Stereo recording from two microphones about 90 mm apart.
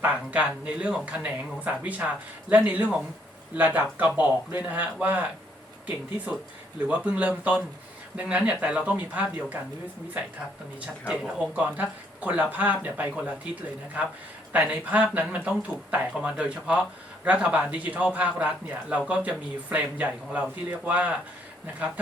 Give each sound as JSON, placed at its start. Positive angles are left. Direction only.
{"t": 0.0, "sound": "a man's voice", "side_deg": -15}
{"t": 11.1, "sound": "a man's voice", "side_deg": -10}
{"t": 14.5, "sound": "a man's voice", "side_deg": -15}